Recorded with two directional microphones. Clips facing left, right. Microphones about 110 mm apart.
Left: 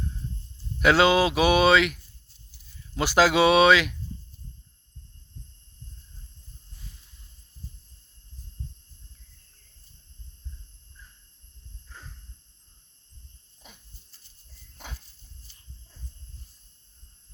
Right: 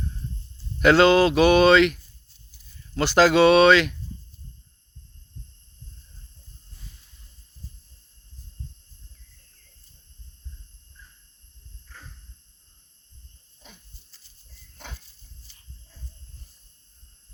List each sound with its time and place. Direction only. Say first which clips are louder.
0.8 s speech: right 4 dB; 5° left (ahead or behind)
11.9 s a sound: even; 20° left (ahead or behind)
15.4 s dog: right 1 dB; 90° right